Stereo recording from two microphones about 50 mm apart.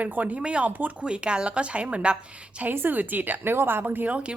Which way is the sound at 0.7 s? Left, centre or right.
Right.